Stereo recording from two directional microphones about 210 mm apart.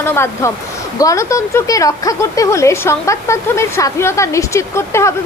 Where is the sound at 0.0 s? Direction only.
10° left (ahead or behind).